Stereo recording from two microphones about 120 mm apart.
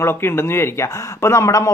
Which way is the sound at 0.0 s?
20° left (ahead or behind).